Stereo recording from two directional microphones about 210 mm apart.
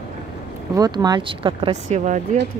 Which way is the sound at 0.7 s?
20° right (ahead or behind).